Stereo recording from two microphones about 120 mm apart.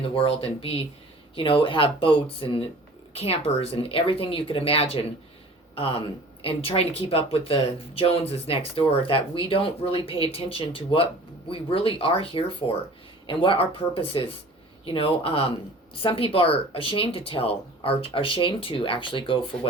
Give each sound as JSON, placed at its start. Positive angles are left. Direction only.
{"t": 0.1, "sound": "speech", "side_deg": 50}